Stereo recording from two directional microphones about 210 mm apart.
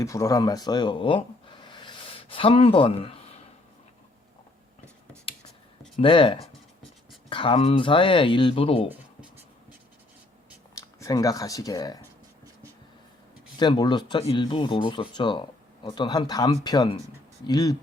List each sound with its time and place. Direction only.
0.0 s speech: 15° left (ahead or behind)
6.0 s speech: 25° left (ahead or behind)
10.8 s speech: 15° left (ahead or behind)
13.6 s speech: 20° left (ahead or behind)